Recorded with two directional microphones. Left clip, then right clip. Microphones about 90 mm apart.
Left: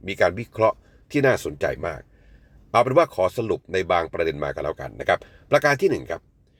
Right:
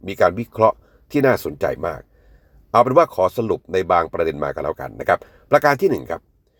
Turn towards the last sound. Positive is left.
turn(degrees=-40)  # may be behind; listen again after turning